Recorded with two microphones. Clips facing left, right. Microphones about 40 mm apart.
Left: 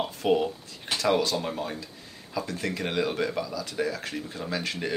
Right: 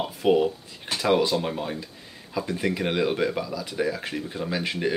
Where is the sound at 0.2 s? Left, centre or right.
Centre.